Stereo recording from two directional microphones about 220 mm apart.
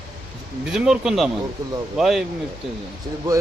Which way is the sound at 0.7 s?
5° right (ahead or behind).